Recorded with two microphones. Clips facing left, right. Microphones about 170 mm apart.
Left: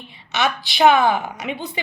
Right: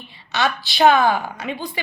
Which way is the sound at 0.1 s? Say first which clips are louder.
Even; 20° left (ahead or behind).